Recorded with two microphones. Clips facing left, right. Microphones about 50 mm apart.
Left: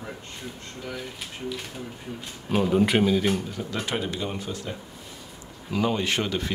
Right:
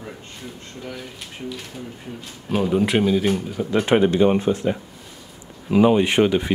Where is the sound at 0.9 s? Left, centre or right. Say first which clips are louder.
Even; centre.